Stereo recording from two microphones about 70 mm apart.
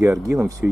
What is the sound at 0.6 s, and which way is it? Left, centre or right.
Speech, right.